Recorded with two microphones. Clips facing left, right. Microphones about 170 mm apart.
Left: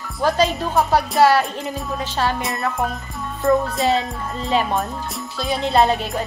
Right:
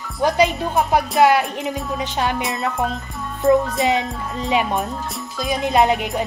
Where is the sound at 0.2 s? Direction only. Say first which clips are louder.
Right 1 dB; 15° right (ahead or behind).